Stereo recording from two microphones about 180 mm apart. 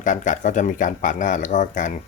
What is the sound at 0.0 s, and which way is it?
Speech, 45° left (ahead or behind).